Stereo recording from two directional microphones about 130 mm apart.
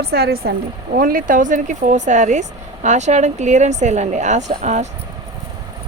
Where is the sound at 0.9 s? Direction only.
90° right; by 4.9 s 60° right (ahead or behind).